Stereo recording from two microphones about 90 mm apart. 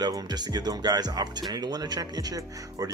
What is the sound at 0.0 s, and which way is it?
Speech, 50° right (ahead or behind).